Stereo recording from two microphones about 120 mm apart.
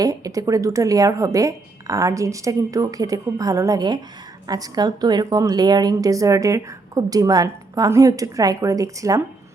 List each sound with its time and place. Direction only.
0.0 s a woman's voice: 30° right (ahead or behind)